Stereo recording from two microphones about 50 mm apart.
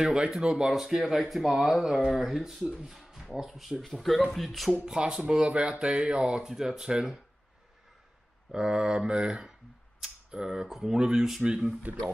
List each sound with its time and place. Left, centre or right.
0.0 s speech: centre
4.8 s speech: centre
8.5 s speech: centre